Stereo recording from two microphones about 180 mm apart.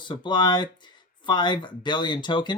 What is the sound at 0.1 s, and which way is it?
Speech, 25° left (ahead or behind).